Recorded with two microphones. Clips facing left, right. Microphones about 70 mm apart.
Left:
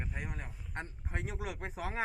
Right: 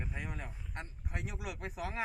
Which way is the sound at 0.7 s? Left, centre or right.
Left.